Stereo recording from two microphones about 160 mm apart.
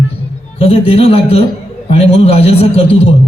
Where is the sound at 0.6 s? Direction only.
40° left (ahead or behind).